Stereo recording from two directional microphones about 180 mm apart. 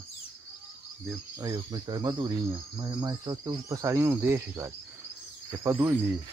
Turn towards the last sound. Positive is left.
turn(degrees=-15)  # may be behind; listen again after turning